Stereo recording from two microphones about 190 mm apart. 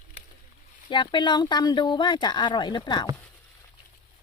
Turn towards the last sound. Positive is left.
turn(degrees=25)  # may be behind; listen again after turning